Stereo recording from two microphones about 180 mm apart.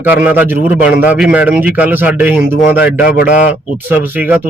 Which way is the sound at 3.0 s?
60° left (ahead or behind).